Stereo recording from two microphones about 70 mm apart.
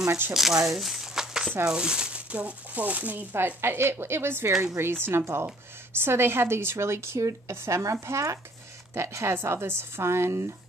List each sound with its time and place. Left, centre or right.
0.3 s speech: centre; by 3.3 s right
3.3 s speech: right